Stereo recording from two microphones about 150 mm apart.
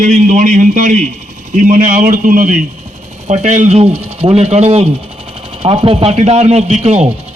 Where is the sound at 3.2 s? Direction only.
50° right (ahead or behind).